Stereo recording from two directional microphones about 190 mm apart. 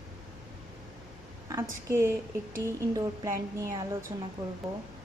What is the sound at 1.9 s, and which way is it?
A woman's voice, 15° right (ahead or behind).